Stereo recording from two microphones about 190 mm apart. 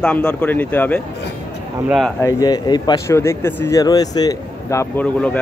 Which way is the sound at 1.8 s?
Centre (ahead or behind).